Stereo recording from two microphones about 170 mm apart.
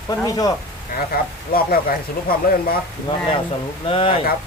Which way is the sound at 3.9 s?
35° left (ahead or behind).